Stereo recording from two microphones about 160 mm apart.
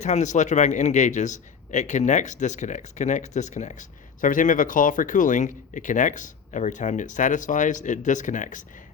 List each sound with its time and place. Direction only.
0.0 s a man's voice: 45° left (ahead or behind)